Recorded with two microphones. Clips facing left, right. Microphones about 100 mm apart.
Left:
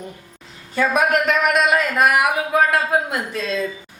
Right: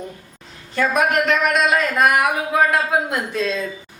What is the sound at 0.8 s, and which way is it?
Speech, 5° left (ahead or behind).